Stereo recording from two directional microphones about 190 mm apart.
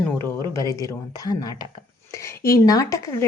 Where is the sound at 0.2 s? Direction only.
15° left (ahead or behind).